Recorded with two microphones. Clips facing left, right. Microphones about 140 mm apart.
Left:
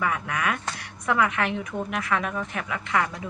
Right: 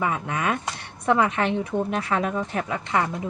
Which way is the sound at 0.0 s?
25° right (ahead or behind).